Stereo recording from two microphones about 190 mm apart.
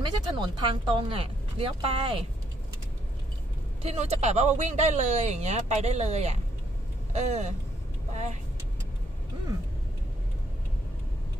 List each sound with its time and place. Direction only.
0.0 s speech: 25° right (ahead or behind)
3.8 s speech: 35° right (ahead or behind)